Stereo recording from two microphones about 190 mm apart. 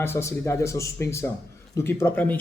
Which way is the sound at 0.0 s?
15° left (ahead or behind).